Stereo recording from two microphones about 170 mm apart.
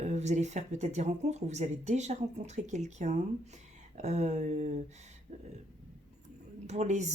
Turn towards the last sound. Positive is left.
turn(degrees=-45)  # may be behind; listen again after turning